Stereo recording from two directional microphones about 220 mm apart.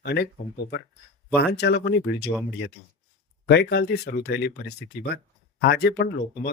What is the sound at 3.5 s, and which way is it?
Speech, 50° left (ahead or behind).